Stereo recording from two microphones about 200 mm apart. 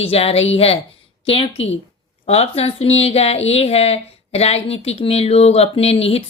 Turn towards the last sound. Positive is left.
turn(degrees=30)  # may be behind; listen again after turning